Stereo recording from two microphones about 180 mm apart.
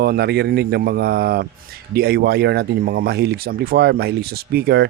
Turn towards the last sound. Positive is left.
turn(degrees=-60)  # may be behind; listen again after turning